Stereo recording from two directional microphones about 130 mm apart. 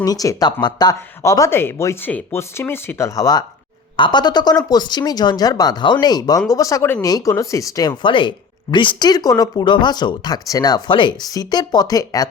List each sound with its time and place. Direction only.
0.0 s speech: 30° left (ahead or behind)